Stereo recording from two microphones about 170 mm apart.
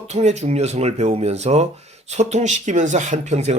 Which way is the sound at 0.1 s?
40° right (ahead or behind).